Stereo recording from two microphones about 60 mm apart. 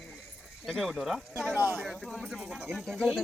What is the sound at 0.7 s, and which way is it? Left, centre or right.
Speech, centre.